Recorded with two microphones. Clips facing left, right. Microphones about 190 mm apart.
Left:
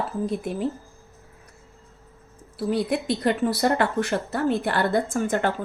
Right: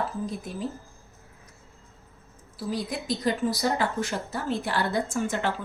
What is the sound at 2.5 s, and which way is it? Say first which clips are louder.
Speech: left 7 dB; 65° left (ahead or behind).